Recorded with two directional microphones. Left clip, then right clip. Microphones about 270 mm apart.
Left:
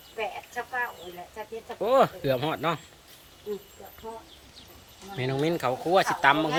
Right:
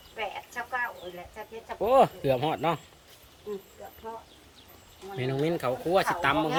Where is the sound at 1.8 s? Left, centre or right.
Centre.